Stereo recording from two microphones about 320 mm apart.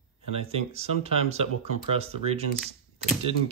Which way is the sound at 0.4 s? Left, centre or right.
Centre.